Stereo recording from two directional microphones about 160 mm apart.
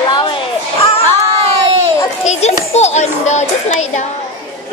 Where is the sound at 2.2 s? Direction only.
45° left (ahead or behind).